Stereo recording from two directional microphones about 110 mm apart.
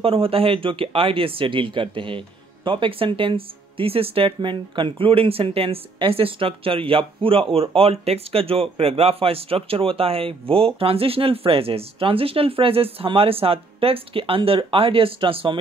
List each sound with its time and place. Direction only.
0.0 s speech: 60° right (ahead or behind)